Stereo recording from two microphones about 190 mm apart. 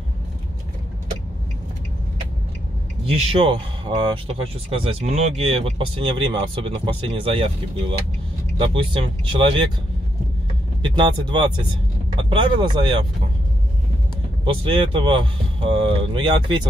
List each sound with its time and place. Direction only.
3.1 s speech: 30° right (ahead or behind)
8.5 s speech: 25° right (ahead or behind)
10.8 s speech: 25° right (ahead or behind)
14.4 s speech: 25° right (ahead or behind)